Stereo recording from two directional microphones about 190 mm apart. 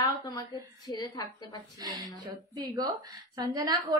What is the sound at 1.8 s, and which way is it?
A woman's voice, 20° right (ahead or behind).